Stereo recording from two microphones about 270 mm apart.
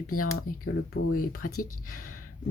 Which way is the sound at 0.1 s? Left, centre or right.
Left.